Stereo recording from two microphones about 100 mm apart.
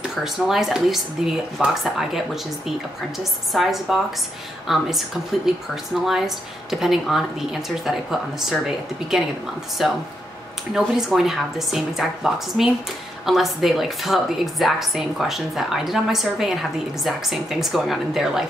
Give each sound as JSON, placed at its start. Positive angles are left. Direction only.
{"t": 0.0, "sound": "a woman's voice", "side_deg": -5}
{"t": 3.5, "sound": "a woman's voice", "side_deg": 0}